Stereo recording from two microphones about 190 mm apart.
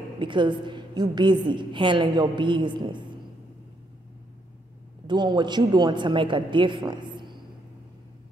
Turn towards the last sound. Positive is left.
turn(degrees=-25)  # may be behind; listen again after turning